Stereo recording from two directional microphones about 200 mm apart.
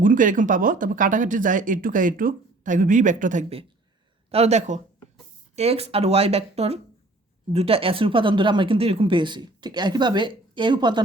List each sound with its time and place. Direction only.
0.0 s speech: 40° right (ahead or behind); by 11.0 s 20° right (ahead or behind)